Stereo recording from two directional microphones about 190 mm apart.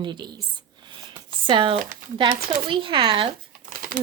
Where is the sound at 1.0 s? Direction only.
25° right (ahead or behind).